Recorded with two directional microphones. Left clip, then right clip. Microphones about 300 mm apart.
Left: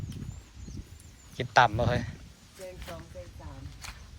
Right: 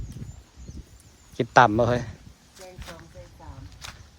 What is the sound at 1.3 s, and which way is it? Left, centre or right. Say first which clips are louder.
Speech: right 5 dB; centre.